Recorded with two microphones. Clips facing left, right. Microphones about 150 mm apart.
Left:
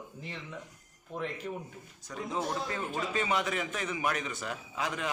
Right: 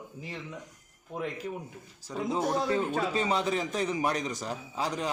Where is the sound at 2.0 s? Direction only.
30° right (ahead or behind).